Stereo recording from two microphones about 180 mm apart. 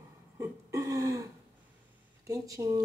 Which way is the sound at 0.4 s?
15° right (ahead or behind).